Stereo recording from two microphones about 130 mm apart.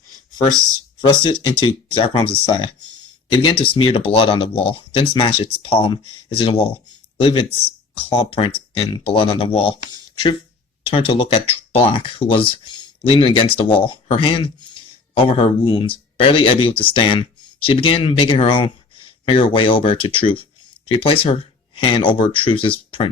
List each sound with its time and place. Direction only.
1.2 s speech: 40° left (ahead or behind)